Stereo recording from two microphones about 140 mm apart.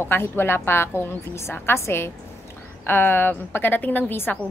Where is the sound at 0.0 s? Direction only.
15° left (ahead or behind).